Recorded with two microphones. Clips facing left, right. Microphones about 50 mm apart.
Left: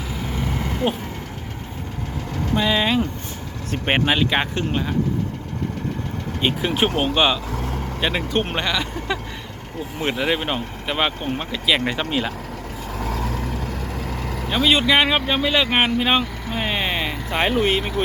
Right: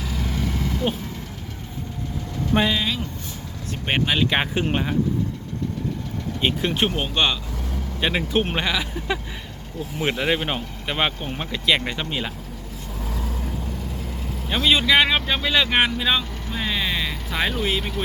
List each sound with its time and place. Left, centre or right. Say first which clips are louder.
0.1 s vehicle: left 1 dB; left
2.7 s speech: left 5 dB; left
3.8 s speech: left 3 dB; centre
4.2 s speech: left 1 dB; centre
6.4 s speech: left 2 dB; centre
7.5 s vehicle: left 5 dB; left
8.0 s speech: even; centre
13.0 s vehicle: left 5 dB; left
14.5 s speech: left 1 dB; centre
16.0 s speech: left 3 dB; left